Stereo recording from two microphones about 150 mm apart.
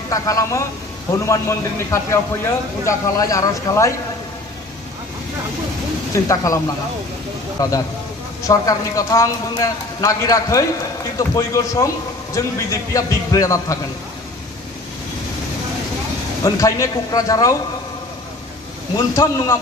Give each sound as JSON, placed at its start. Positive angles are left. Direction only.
{"t": 0.1, "sound": "a man's voice", "side_deg": 20}
{"t": 6.1, "sound": "a man's voice", "side_deg": 20}
{"t": 16.4, "sound": "a man's voice", "side_deg": 20}
{"t": 18.9, "sound": "a man's voice", "side_deg": 20}